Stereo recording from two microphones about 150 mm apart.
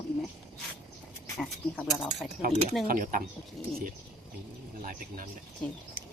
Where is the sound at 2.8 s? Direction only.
65° right (ahead or behind).